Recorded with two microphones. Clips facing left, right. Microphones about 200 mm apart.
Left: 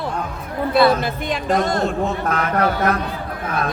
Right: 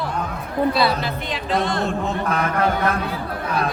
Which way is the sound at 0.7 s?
50° left (ahead or behind).